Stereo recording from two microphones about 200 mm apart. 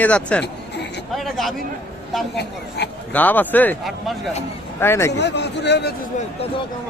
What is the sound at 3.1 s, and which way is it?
A man's voice, 10° left (ahead or behind).